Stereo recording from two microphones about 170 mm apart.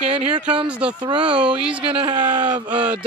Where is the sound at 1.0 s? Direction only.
25° right (ahead or behind).